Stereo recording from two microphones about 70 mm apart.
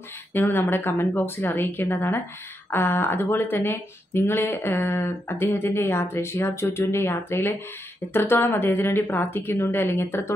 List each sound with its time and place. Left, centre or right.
0.3 s speech: left